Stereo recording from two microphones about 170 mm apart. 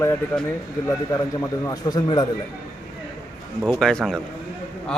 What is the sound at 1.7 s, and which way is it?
Speech, 20° left (ahead or behind).